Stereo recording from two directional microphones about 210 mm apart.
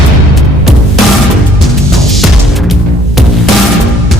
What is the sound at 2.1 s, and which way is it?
Music, centre (ahead or behind).